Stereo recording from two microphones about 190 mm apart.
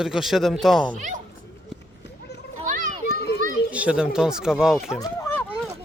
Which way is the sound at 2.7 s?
45° right (ahead or behind).